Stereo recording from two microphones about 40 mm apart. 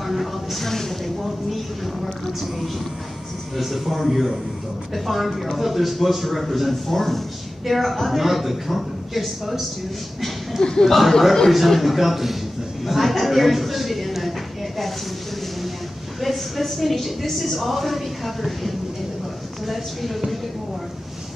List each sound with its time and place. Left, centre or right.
0.0 s a sound: centre
3.5 s speech: centre
10.6 s speech: centre
10.9 s speech: centre
12.8 s a sound: centre
16.2 s speech: centre